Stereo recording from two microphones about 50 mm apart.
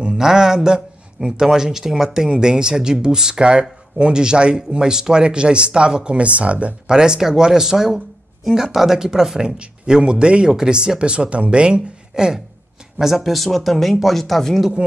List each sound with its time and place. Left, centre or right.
0.1 s a man's voice: centre; by 6.7 s right
6.9 s speech: centre
13.0 s speech: centre